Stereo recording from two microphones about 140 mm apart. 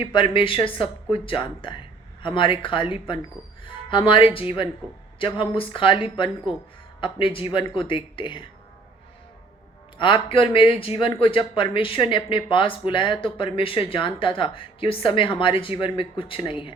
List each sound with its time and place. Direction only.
0.0 s speech: 35° left (ahead or behind)
10.0 s speech: 35° left (ahead or behind)